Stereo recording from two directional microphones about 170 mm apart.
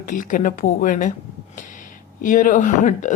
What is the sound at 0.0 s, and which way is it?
A woman's voice, 50° left (ahead or behind).